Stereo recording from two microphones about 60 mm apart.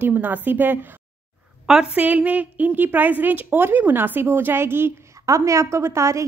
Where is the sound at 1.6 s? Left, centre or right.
Centre; by 5.1 s right.